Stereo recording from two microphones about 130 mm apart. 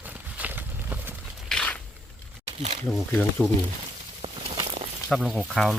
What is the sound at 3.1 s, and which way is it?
Speech, 10° left (ahead or behind).